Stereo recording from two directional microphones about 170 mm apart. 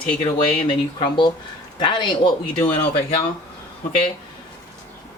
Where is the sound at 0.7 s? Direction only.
30° left (ahead or behind).